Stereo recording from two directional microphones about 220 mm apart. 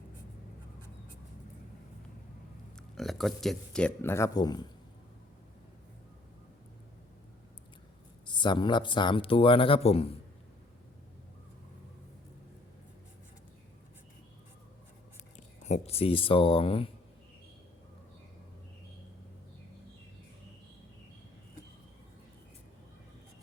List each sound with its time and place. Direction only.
2.9 s speech: centre (ahead or behind); by 4.7 s 20° left (ahead or behind)
8.3 s speech: 20° left (ahead or behind)
15.6 s speech: 30° left (ahead or behind)